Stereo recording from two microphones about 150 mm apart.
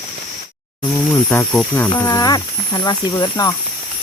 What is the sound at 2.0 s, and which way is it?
Speech, 25° left (ahead or behind).